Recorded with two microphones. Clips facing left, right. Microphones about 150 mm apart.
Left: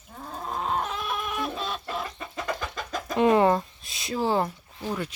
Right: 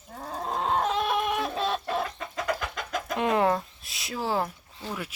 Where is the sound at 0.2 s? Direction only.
35° right (ahead or behind).